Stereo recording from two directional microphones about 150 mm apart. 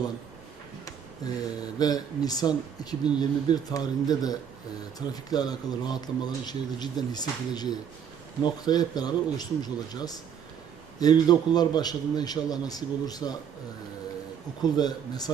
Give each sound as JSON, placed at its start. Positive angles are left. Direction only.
{"t": 0.9, "sound": "speech", "side_deg": 25}
{"t": 14.6, "sound": "speech", "side_deg": 25}